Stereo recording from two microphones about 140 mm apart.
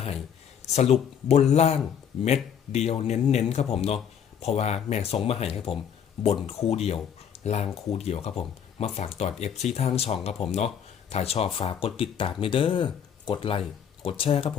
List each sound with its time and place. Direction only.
0.6 s speech: 50° left (ahead or behind)